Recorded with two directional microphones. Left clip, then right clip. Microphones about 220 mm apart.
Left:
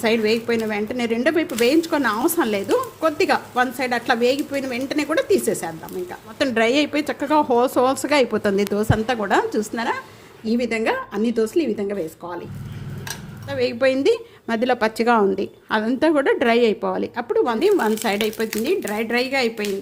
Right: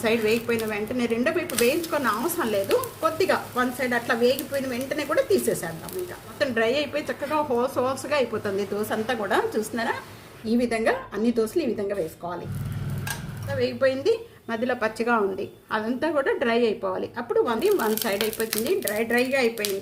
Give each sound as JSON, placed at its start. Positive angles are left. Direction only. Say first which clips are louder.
{"t": 0.0, "sound": "a woman's voice", "louder": "left 3 dB", "side_deg": 40}
{"t": 13.5, "sound": "a woman's voice", "louder": "left 4 dB", "side_deg": 35}